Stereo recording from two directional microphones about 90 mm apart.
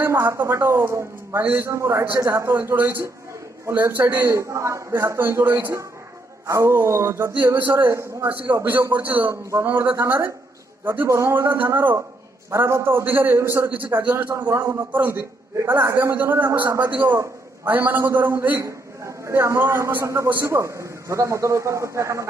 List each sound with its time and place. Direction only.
0.0 s a man's voice: 30° right (ahead or behind)
4.4 s a man's voice: 35° right (ahead or behind)
18.6 s a man's voice: 35° right (ahead or behind)